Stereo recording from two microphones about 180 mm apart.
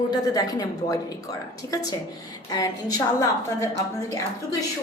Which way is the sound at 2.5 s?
20° left (ahead or behind).